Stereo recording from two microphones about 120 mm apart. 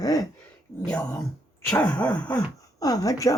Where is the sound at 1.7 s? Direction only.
10° left (ahead or behind).